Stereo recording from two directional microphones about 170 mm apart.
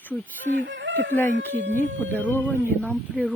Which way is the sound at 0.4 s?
90° right.